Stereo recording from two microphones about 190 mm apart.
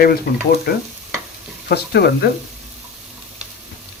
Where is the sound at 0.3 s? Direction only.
60° left (ahead or behind).